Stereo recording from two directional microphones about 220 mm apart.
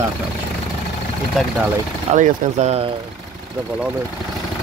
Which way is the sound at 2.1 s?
30° right (ahead or behind).